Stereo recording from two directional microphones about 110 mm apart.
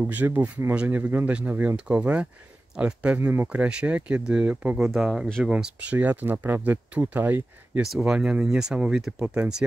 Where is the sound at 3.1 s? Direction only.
20° right (ahead or behind).